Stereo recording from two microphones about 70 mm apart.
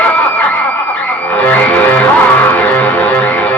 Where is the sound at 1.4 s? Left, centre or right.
Left.